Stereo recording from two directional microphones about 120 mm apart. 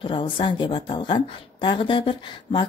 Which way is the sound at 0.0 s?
45° left (ahead or behind).